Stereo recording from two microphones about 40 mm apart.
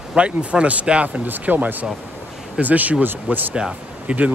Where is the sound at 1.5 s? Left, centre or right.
Right.